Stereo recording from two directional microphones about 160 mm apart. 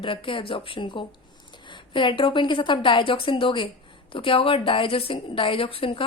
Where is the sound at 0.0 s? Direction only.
30° left (ahead or behind).